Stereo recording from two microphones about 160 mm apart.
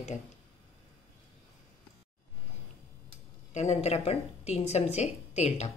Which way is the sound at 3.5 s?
45° left (ahead or behind).